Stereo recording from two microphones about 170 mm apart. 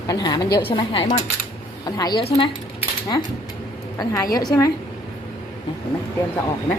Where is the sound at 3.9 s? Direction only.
20° left (ahead or behind).